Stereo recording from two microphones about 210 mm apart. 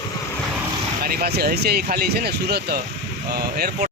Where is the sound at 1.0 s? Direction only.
45° right (ahead or behind).